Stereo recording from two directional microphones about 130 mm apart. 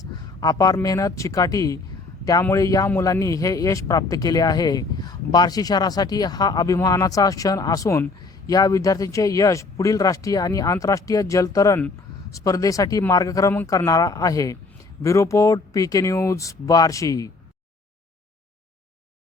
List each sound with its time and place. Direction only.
0.2 s speech: 30° left (ahead or behind)